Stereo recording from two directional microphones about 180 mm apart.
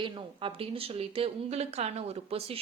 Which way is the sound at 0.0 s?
30° right (ahead or behind).